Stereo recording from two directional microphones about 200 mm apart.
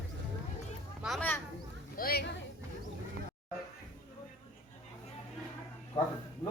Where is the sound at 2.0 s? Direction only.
50° left (ahead or behind).